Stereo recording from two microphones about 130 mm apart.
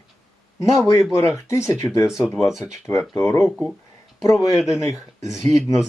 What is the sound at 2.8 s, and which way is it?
Speech, 20° left (ahead or behind).